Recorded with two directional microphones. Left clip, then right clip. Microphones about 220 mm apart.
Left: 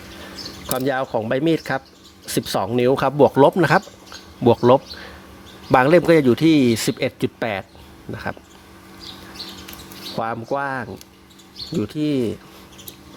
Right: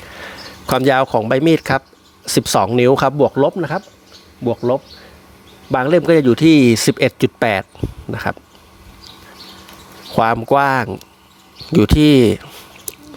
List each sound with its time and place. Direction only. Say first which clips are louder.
0.7 s speech: right 8 dB; 30° right (ahead or behind)
3.2 s speech: left 1 dB; 5° right (ahead or behind)
5.7 s speech: right 1 dB; 5° right (ahead or behind); by 8.4 s 25° right (ahead or behind)
10.2 s speech: right 11 dB; 30° right (ahead or behind)